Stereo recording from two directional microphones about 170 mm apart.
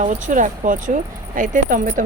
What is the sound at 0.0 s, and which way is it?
A woman's voice, 45° right (ahead or behind).